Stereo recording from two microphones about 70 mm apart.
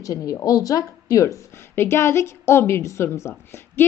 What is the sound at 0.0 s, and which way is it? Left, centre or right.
A woman's voice, left.